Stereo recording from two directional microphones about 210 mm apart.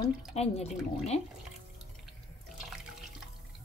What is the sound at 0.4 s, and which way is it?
Speech, 30° left (ahead or behind).